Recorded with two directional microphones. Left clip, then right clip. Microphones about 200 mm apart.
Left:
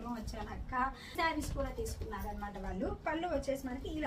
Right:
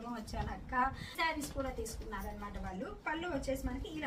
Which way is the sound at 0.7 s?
Centre (ahead or behind).